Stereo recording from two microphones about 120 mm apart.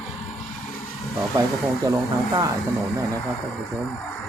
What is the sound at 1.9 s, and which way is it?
Speech, 30° right (ahead or behind).